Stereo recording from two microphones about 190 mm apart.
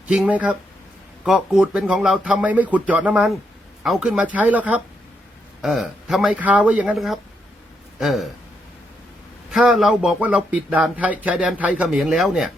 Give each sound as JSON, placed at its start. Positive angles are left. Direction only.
{"t": 0.1, "sound": "speech", "side_deg": -5}
{"t": 9.5, "sound": "speech", "side_deg": 0}